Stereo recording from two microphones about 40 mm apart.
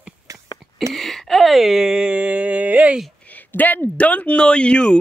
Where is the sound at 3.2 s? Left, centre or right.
Left.